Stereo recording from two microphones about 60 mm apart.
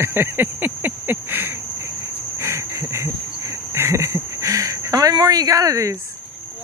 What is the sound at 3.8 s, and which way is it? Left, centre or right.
Speech, right.